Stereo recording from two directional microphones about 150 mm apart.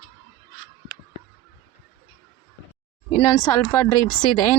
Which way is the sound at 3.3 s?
20° left (ahead or behind).